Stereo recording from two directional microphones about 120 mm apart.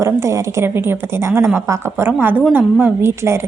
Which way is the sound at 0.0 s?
25° right (ahead or behind).